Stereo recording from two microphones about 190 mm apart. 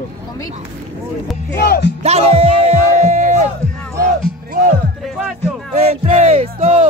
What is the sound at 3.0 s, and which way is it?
Music, 40° right (ahead or behind).